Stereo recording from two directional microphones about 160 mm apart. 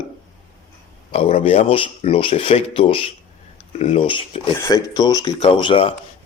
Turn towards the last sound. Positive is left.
turn(degrees=35)  # may be behind; listen again after turning